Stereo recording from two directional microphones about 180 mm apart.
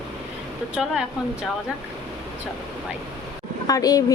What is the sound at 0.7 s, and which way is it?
Speech, 5° right (ahead or behind).